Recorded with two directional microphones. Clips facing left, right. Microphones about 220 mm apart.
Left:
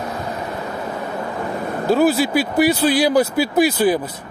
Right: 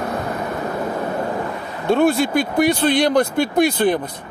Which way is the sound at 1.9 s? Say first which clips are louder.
Even; 5° left (ahead or behind).